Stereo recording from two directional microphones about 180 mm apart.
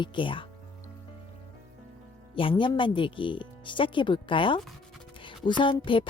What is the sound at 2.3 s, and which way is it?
Speech, 30° left (ahead or behind).